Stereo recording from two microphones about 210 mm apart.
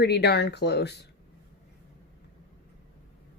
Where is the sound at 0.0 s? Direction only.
50° left (ahead or behind).